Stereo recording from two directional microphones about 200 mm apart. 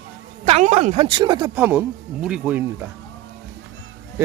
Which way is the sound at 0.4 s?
35° right (ahead or behind).